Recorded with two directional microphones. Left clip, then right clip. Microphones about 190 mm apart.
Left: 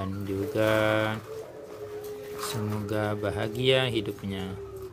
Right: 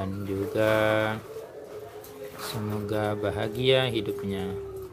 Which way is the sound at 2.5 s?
Centre (ahead or behind).